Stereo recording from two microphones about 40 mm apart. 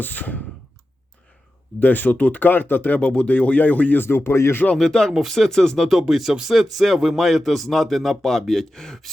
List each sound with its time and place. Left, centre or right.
0.0 s speech: left
1.8 s speech: left
3.0 s speech: left
3.9 s speech: left
4.8 s speech: centre
5.1 s a man's voice: centre
6.0 s a man's voice: centre